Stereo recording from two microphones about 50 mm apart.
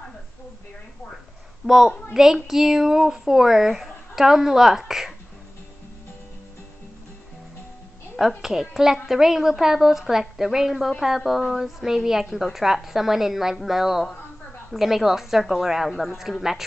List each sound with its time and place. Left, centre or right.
1.6 s a woman's voice: right
2.1 s speech: centre
8.4 s a woman's voice: centre